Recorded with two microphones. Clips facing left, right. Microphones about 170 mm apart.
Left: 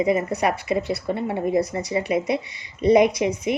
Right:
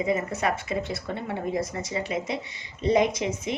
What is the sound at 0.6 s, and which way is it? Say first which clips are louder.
Speech: left 6 dB; 70° left (ahead or behind).